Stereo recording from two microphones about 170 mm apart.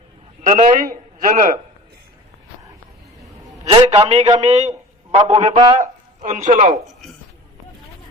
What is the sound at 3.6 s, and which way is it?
A man's voice, 35° right (ahead or behind).